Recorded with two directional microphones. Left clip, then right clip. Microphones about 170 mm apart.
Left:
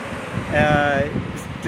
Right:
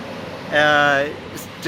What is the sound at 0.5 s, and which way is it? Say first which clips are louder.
Speech: right 3 dB; 10° right (ahead or behind).